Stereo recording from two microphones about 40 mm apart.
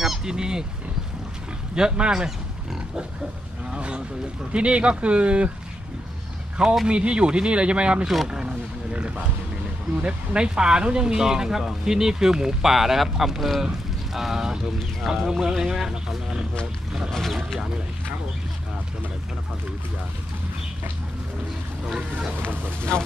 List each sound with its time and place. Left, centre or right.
0.0 s speech: centre
1.8 s speech: centre
3.7 s a sound: right
4.5 s speech: right
6.9 s speech: right
8.3 s speech: centre
8.9 s speech: right; by 15.9 s centre
17.1 s speech: centre
21.8 s speech: centre
22.8 s speech: left